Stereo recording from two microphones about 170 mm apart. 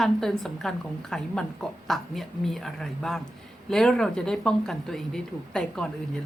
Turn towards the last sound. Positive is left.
turn(degrees=5)  # may be behind; listen again after turning